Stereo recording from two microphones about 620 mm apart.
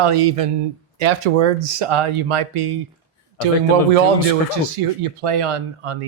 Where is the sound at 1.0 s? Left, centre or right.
Right.